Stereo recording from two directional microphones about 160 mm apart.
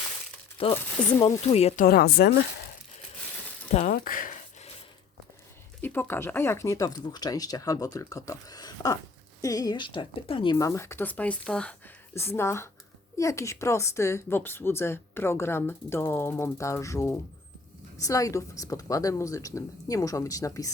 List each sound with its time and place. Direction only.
0.6 s speech: 35° left (ahead or behind)
1.8 s speech: 70° left (ahead or behind)
3.7 s speech: 45° left (ahead or behind)
3.9 s speech: 60° left (ahead or behind)
5.8 s speech: 10° left (ahead or behind)